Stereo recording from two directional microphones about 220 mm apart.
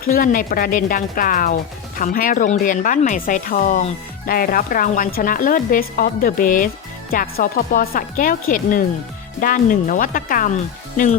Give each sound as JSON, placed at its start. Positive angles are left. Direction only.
{"t": 0.0, "sound": "speech", "side_deg": 40}